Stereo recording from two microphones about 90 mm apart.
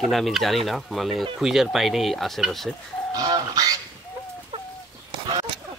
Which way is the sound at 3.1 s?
45° right (ahead or behind).